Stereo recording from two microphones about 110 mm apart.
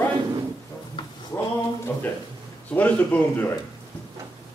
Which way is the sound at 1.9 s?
25° left (ahead or behind).